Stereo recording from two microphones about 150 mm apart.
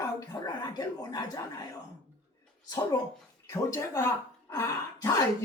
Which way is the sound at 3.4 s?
20° left (ahead or behind).